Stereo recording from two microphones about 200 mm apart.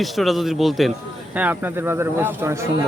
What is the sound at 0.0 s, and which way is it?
Speech, centre (ahead or behind).